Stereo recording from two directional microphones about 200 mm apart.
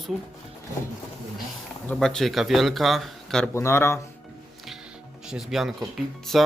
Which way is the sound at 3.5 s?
15° left (ahead or behind).